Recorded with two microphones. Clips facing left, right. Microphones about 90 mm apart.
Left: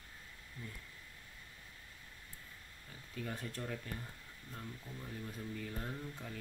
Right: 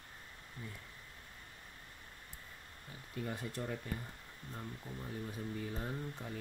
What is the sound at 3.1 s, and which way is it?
Speech, 10° right (ahead or behind).